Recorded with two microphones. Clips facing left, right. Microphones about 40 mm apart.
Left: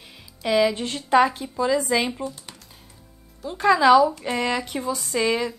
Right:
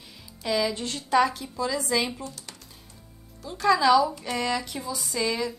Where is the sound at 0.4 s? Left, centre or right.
Left.